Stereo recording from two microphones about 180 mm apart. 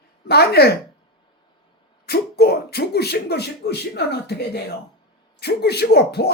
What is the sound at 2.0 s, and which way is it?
Speech, 60° left (ahead or behind).